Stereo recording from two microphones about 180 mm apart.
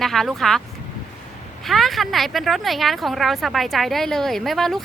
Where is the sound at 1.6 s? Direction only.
Centre (ahead or behind).